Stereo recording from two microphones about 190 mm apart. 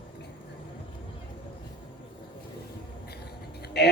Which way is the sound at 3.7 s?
60° left (ahead or behind).